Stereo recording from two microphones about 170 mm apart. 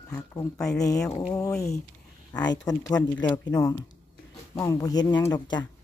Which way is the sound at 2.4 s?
20° left (ahead or behind).